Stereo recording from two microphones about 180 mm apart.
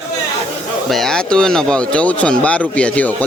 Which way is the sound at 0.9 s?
Centre (ahead or behind).